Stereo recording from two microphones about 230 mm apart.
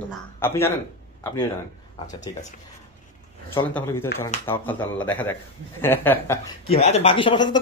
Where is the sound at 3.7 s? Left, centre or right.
Centre.